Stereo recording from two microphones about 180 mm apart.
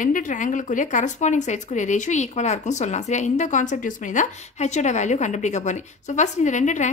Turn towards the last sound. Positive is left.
turn(degrees=40)  # may be behind; listen again after turning